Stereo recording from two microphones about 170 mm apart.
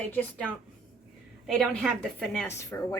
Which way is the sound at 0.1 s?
10° left (ahead or behind).